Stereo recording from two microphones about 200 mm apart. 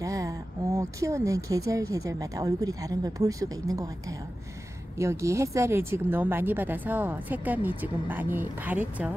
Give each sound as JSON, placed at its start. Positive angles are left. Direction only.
{"t": 0.0, "sound": "speech", "side_deg": -15}
{"t": 4.9, "sound": "speech", "side_deg": -15}